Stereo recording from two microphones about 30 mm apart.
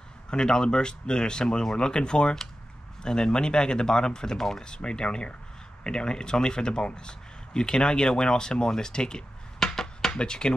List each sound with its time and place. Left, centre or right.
0.3 s speech: left
9.6 s a sound: centre
10.1 s speech: left